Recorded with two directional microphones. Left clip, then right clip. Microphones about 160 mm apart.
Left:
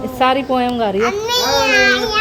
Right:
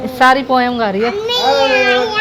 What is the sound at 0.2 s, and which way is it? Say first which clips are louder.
Female singing: right 4 dB; centre (ahead or behind).